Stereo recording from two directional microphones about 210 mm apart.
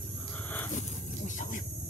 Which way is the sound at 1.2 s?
35° left (ahead or behind).